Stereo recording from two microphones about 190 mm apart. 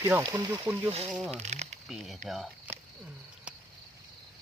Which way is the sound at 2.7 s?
10° right (ahead or behind).